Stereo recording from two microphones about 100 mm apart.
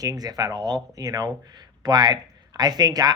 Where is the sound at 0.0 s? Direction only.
40° right (ahead or behind).